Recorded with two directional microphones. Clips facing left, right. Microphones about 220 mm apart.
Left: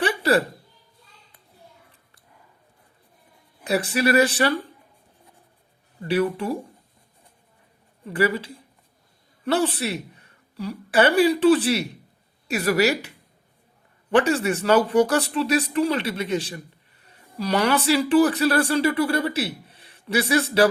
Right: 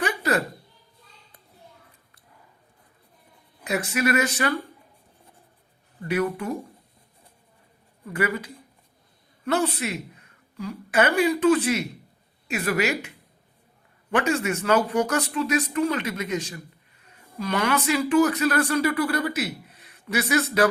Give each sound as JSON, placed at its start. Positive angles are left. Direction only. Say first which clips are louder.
{"t": 0.0, "sound": "a sound", "louder": "left 4 dB", "side_deg": 30}
{"t": 3.6, "sound": "speech", "louder": "left 3 dB", "side_deg": 35}
{"t": 6.0, "sound": "speech", "louder": "left 3 dB", "side_deg": 30}
{"t": 8.0, "sound": "a woman's voice", "louder": "left 4 dB", "side_deg": 30}